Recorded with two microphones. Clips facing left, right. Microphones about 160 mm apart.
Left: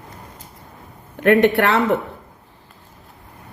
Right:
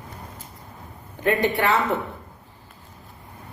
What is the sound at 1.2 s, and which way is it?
Speech, 70° left (ahead or behind).